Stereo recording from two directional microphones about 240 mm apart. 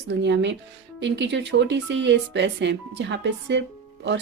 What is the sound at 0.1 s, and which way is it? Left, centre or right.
Speech, right.